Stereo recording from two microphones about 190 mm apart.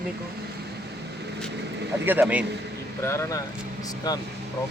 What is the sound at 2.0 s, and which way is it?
Speech, 10° right (ahead or behind).